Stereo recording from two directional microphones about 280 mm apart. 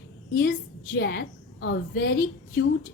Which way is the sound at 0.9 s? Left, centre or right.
Left.